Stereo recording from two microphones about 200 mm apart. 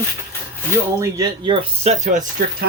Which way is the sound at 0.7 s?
15° right (ahead or behind).